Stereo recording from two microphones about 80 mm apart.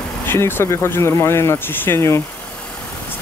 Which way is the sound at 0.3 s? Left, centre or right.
Left.